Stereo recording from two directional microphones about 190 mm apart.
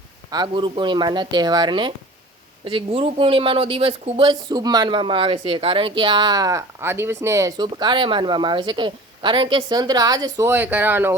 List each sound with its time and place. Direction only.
0.3 s speech: 20° right (ahead or behind)